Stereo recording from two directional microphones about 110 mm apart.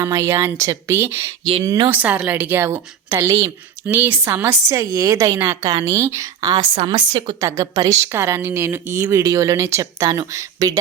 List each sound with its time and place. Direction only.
0.0 s a woman's voice: 25° right (ahead or behind)
6.7 s a woman's voice: 45° right (ahead or behind)